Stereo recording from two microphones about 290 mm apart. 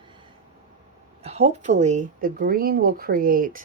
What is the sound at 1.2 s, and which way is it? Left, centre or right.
Speech, right.